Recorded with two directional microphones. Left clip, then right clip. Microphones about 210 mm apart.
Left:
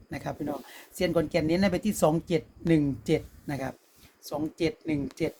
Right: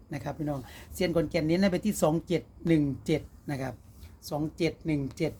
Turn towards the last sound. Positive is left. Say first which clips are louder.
# left 1 dB
turn(degrees=-15)  # may be behind; listen again after turning